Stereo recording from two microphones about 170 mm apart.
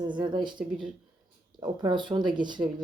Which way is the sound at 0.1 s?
25° right (ahead or behind).